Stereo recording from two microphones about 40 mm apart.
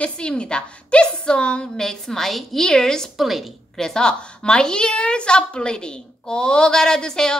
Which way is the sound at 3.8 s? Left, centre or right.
Centre.